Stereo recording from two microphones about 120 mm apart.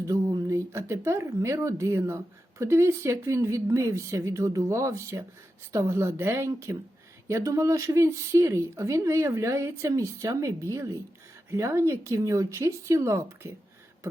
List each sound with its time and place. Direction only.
0.0 s a woman's voice: 25° right (ahead or behind)